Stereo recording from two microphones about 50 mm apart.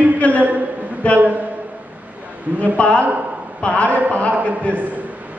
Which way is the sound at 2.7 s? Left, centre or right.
Left.